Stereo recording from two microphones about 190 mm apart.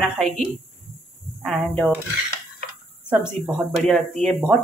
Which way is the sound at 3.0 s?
5° right (ahead or behind).